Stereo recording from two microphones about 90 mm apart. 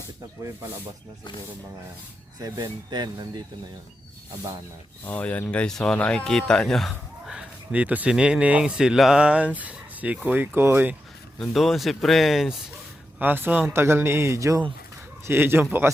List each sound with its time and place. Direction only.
2.4 s speech: 50° right (ahead or behind)
5.0 s speech: 15° left (ahead or behind)
7.3 s speech: 15° right (ahead or behind)
11.3 s speech: centre (ahead or behind)
13.1 s a man's voice: 20° right (ahead or behind)
15.3 s a man's voice: 25° right (ahead or behind)